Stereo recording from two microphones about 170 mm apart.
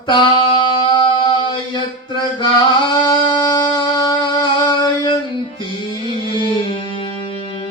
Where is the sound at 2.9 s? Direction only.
25° left (ahead or behind).